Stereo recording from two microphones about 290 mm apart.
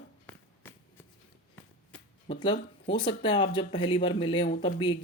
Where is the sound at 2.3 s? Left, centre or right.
Centre.